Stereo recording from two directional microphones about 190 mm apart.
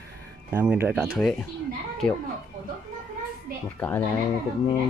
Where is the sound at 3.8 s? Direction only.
10° left (ahead or behind).